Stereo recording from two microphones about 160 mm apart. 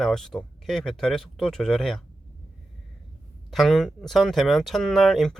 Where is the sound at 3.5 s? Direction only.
Centre (ahead or behind).